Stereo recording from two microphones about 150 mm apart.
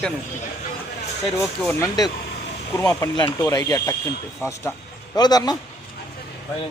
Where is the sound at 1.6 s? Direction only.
20° left (ahead or behind).